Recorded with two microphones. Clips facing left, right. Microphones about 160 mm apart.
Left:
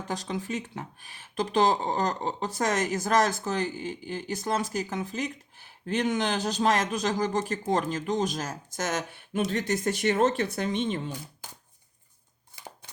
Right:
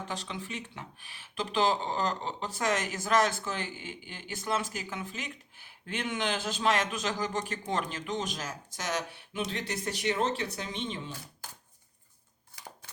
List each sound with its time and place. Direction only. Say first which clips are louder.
0.1 s speech: left 6 dB; 40° left (ahead or behind)
12.5 s scissors: left 3 dB; 20° left (ahead or behind)